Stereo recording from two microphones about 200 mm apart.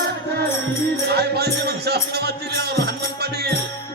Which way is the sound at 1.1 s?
55° right (ahead or behind).